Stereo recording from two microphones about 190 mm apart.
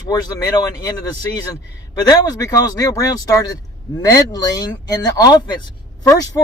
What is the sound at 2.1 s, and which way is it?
Speech, 20° left (ahead or behind).